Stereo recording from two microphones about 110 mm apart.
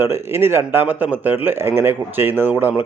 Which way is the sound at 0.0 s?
20° right (ahead or behind).